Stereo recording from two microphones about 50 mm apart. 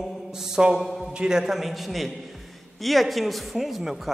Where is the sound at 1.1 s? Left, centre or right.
Centre.